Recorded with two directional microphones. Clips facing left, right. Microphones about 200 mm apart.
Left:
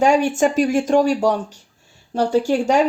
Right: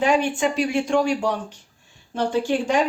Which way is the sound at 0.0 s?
45° left (ahead or behind).